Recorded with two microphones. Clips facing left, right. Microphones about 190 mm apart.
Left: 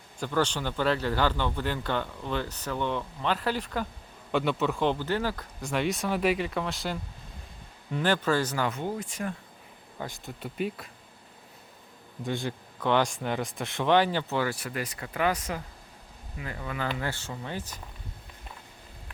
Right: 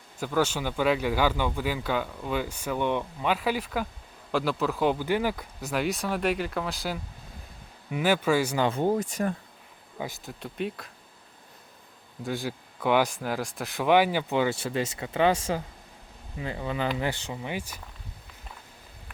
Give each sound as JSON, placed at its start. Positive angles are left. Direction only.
{"t": 0.2, "sound": "speech", "side_deg": -5}
{"t": 5.5, "sound": "speech", "side_deg": 0}
{"t": 8.5, "sound": "speech", "side_deg": -25}
{"t": 8.8, "sound": "speech", "side_deg": -45}
{"t": 10.0, "sound": "speech", "side_deg": -5}
{"t": 12.2, "sound": "speech", "side_deg": 0}